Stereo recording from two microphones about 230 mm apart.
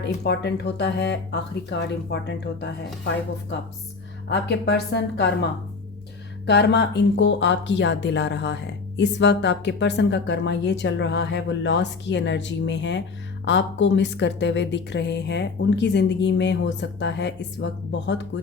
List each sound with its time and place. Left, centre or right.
0.0 s speech: left
4.3 s speech: left